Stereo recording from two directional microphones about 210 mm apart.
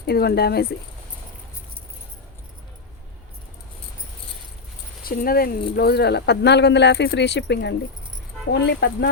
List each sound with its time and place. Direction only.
0.0 s speech: 50° left (ahead or behind)
5.0 s speech: 45° left (ahead or behind)